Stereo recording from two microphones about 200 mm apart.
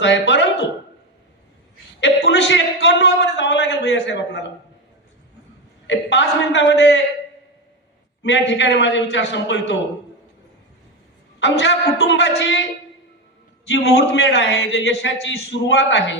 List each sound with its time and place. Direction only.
0.0 s speech: 65° left (ahead or behind)
2.0 s a man's voice: 65° left (ahead or behind)
5.9 s a man's voice: 60° left (ahead or behind)
8.2 s a man's voice: 65° left (ahead or behind)
11.3 s a man's voice: 65° left (ahead or behind)
13.7 s a man's voice: 60° left (ahead or behind)